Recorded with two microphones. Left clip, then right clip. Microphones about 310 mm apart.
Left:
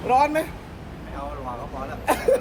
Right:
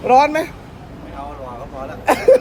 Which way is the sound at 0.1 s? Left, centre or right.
Right.